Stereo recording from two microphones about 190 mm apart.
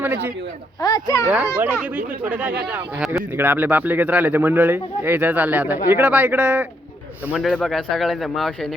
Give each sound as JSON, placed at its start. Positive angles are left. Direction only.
{"t": 0.0, "sound": "a man's voice", "side_deg": -10}
{"t": 0.8, "sound": "speech", "side_deg": 20}
{"t": 1.3, "sound": "speech", "side_deg": -10}